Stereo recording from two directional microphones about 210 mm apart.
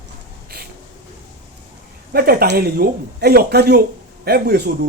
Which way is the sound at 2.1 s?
45° right (ahead or behind).